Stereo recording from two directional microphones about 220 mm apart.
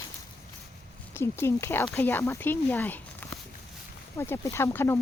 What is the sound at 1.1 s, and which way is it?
Speech, 10° left (ahead or behind).